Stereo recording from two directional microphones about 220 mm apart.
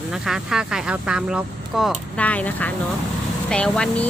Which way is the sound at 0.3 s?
5° right (ahead or behind).